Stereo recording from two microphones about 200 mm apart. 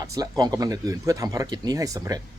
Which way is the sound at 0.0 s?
20° right (ahead or behind).